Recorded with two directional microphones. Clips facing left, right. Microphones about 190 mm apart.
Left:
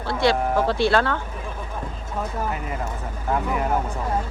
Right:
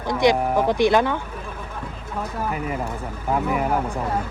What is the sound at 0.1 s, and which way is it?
Speech, 15° right (ahead or behind).